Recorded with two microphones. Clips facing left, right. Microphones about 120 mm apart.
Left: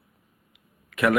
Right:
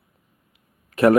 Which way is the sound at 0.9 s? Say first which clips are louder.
Right 7 dB; 35° right (ahead or behind).